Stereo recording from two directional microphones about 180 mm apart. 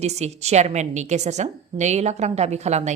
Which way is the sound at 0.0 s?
35° right (ahead or behind).